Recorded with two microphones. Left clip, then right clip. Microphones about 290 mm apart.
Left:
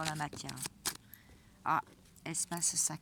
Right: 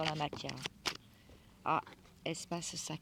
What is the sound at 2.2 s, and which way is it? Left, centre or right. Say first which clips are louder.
Speech: left 2 dB; centre.